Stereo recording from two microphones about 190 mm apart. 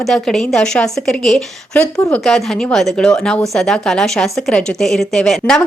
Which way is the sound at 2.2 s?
Centre (ahead or behind).